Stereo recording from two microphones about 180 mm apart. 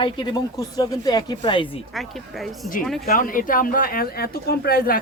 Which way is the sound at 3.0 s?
50° left (ahead or behind).